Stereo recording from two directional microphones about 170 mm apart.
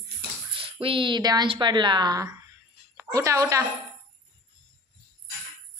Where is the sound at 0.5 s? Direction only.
30° right (ahead or behind).